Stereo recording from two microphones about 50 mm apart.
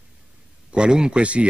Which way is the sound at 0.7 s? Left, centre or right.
Centre.